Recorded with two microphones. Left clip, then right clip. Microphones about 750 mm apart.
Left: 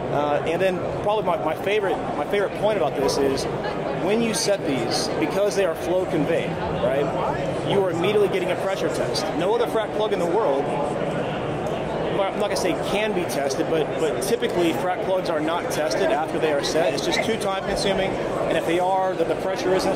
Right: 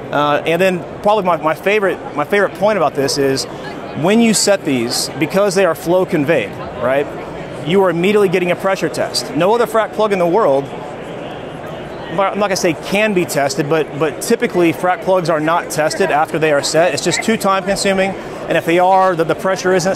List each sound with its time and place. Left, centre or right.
0.1 s a man's voice: right
7.8 s speech: right
12.2 s speech: right